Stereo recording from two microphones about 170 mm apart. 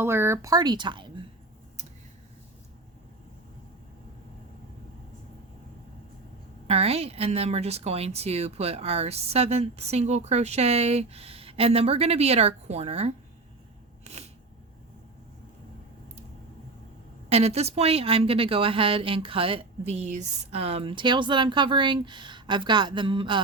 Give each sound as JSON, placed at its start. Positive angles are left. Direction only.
{"t": 0.0, "sound": "speech", "side_deg": -15}
{"t": 6.7, "sound": "a woman's voice", "side_deg": -35}
{"t": 14.0, "sound": "a sound", "side_deg": -40}
{"t": 17.2, "sound": "a woman's voice", "side_deg": -35}